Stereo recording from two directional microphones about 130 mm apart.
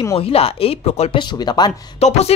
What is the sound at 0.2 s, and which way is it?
Speech, 50° left (ahead or behind).